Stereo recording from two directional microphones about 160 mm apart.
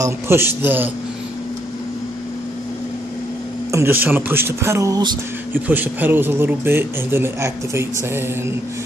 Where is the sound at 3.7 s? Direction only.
15° right (ahead or behind).